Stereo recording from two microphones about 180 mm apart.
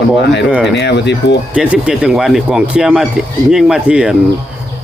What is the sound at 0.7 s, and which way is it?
Speech, 70° left (ahead or behind).